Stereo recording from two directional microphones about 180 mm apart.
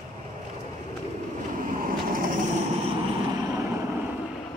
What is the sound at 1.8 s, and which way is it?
Vehicle, 50° right (ahead or behind).